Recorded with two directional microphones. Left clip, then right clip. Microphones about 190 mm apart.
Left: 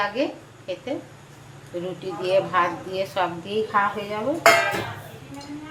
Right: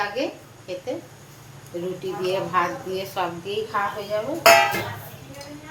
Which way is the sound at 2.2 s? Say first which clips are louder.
Left 3 dB; 35° left (ahead or behind).